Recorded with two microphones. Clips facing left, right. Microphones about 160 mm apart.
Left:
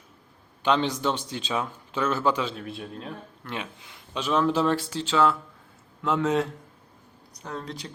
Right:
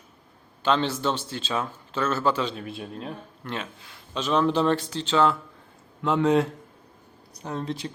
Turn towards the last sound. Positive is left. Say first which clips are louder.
# right 4 dB
turn(degrees=-20)  # may be behind; listen again after turning